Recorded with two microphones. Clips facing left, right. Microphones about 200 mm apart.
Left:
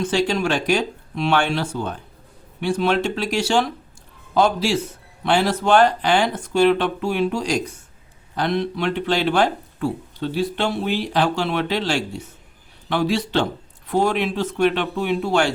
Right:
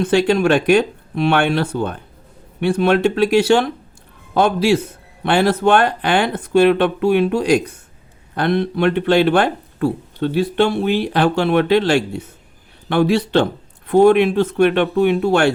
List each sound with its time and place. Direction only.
0.0 s speech: 60° right (ahead or behind)